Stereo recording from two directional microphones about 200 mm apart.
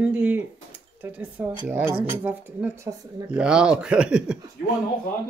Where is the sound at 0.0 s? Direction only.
10° right (ahead or behind).